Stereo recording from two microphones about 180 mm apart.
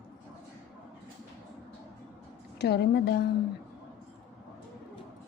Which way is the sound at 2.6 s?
65° left (ahead or behind).